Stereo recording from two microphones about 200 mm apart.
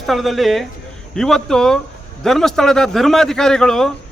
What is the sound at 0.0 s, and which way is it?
A man's voice, centre (ahead or behind).